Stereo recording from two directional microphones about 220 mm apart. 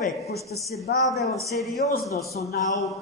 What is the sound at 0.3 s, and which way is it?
Speech, 15° right (ahead or behind).